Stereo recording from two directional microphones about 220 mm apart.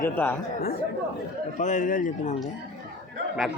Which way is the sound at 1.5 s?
35° left (ahead or behind).